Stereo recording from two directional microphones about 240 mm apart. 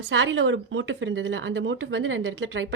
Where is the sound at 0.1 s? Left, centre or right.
Right.